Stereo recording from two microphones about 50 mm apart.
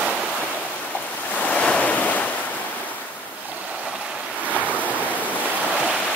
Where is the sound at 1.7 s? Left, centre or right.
Left.